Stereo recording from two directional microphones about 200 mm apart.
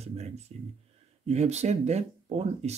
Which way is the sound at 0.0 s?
35° right (ahead or behind).